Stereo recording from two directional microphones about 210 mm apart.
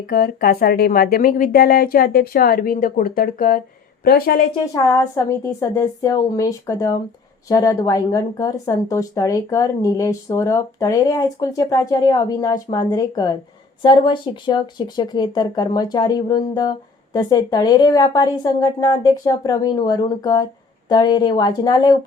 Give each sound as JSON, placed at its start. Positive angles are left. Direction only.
{"t": 0.1, "sound": "speech", "side_deg": 45}
{"t": 4.6, "sound": "speech", "side_deg": 15}